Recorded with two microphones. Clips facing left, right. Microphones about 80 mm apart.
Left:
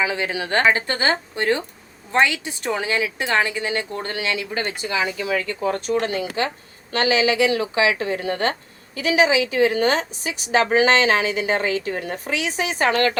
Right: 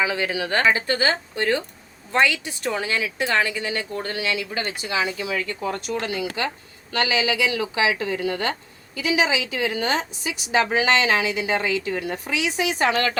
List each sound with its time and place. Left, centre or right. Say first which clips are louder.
0.0 s a woman's voice: even; left